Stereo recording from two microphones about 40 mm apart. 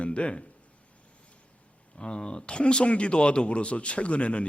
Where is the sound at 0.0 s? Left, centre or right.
Left.